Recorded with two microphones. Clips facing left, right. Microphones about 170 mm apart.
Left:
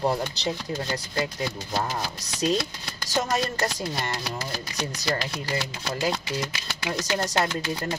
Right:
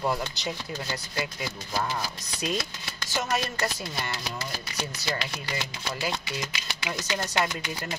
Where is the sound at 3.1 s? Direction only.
40° left (ahead or behind).